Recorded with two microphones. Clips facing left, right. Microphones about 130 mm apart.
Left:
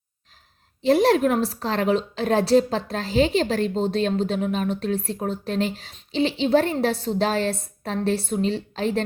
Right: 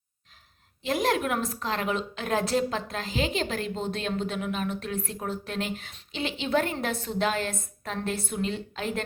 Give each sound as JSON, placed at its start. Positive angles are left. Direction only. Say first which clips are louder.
{"t": 0.8, "sound": "a woman's voice", "louder": "left 9 dB", "side_deg": 35}